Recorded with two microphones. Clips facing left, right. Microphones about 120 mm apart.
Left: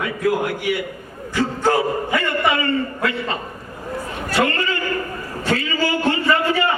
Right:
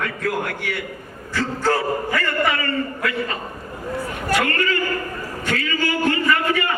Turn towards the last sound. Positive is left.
turn(degrees=30)  # may be behind; listen again after turning